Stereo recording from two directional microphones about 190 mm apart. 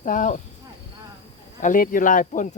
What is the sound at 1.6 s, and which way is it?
Speech, 45° left (ahead or behind).